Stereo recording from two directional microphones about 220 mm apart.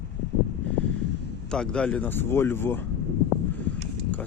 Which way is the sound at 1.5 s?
5° left (ahead or behind).